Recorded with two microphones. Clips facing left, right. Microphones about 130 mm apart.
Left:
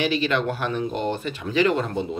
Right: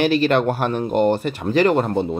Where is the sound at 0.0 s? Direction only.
50° right (ahead or behind).